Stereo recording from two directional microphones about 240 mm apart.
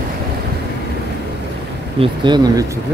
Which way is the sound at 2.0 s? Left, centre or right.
Centre.